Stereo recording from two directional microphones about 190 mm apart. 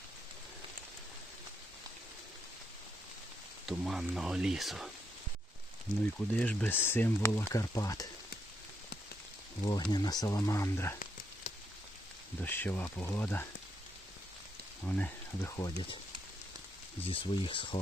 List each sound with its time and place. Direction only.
3.7 s speech: centre (ahead or behind)
6.1 s speech: 5° left (ahead or behind)
9.6 s speech: 20° left (ahead or behind)
12.4 s speech: 10° left (ahead or behind)
14.8 s speech: 10° left (ahead or behind)
17.0 s speech: 30° left (ahead or behind)